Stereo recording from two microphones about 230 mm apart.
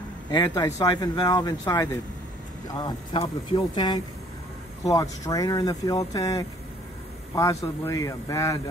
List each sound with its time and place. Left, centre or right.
0.3 s speech: centre